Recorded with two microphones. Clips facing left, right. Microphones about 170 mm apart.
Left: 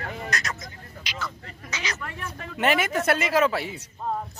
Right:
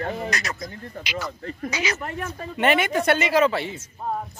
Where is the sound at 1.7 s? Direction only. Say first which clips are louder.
Right 5 dB; 5° right (ahead or behind).